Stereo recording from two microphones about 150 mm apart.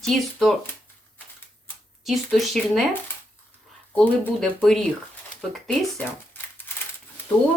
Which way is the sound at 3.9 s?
10° left (ahead or behind).